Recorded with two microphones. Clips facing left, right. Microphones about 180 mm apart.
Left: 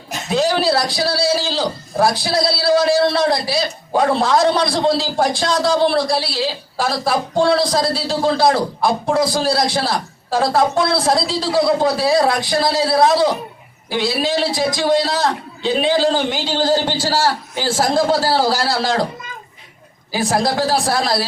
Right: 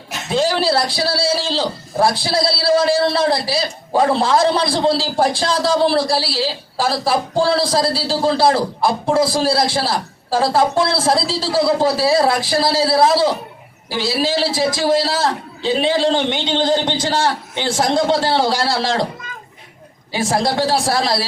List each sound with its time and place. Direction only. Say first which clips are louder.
0.3 s a man's voice: even; centre (ahead or behind)
2.5 s a man's voice: left 1 dB; 30° right (ahead or behind)
3.4 s a man's voice: left 1 dB; centre (ahead or behind)
6.1 s a man's voice: right 1 dB; 30° right (ahead or behind)
6.4 s a man's voice: right 1 dB; centre (ahead or behind)
20.1 s a man's voice: even; centre (ahead or behind)